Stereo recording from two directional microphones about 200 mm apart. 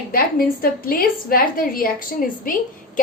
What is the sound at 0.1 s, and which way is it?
A woman's voice, 45° left (ahead or behind).